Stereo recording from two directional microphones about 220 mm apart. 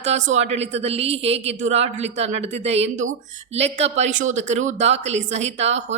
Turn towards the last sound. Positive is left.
turn(degrees=-30)  # may be behind; listen again after turning